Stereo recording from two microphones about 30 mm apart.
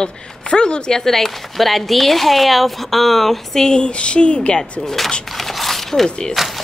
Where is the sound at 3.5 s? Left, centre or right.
Left.